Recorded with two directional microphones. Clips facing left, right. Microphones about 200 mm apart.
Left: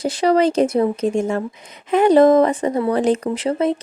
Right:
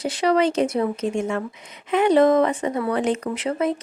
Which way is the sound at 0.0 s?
35° left (ahead or behind).